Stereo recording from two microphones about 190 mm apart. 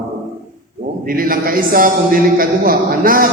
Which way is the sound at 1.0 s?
50° right (ahead or behind).